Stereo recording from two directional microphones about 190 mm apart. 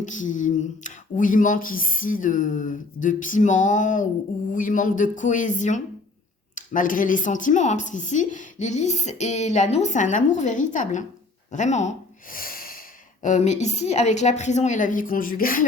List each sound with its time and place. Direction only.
0.0 s a woman's voice: 40° left (ahead or behind)
11.5 s snort: 40° left (ahead or behind)
13.2 s a woman's voice: 40° left (ahead or behind)